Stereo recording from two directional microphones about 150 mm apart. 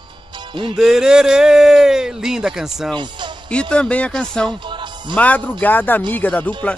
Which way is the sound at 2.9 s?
30° right (ahead or behind).